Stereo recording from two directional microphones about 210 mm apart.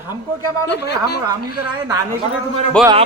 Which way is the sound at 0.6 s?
55° left (ahead or behind).